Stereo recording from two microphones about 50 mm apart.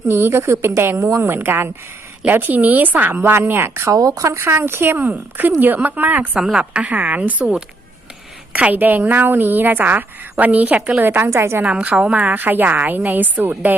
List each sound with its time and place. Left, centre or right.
0.1 s a woman's voice: right
3.8 s speech: right
4.4 s a woman's voice: right
6.3 s a woman's voice: centre
6.6 s a woman's voice: right
11.6 s a woman's voice: right